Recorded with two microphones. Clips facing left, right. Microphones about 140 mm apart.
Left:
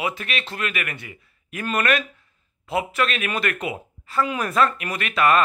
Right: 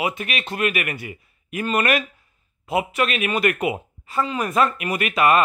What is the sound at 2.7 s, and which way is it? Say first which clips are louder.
Speech: right 2 dB; 10° right (ahead or behind).